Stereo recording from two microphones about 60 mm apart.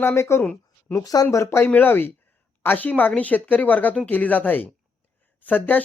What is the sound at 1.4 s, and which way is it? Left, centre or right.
Speech, left.